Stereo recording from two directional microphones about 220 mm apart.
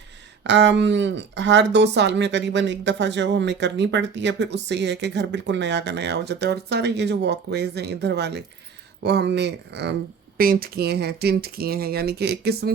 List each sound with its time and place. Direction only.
0.4 s speech: 55° right (ahead or behind)